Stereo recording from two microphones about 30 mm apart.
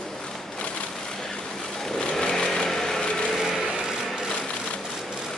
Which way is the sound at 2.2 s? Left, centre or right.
Left.